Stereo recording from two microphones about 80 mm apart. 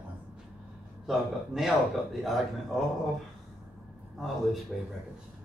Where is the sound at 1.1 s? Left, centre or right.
Centre.